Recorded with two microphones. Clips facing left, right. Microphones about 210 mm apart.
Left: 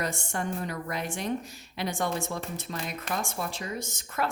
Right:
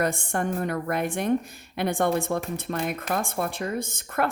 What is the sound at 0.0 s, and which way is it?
Speech, 55° right (ahead or behind).